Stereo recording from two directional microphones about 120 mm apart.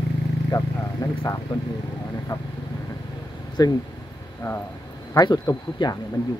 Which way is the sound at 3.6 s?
30° left (ahead or behind).